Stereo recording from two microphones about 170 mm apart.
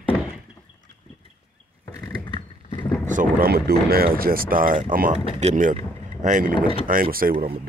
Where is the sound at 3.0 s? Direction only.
50° right (ahead or behind).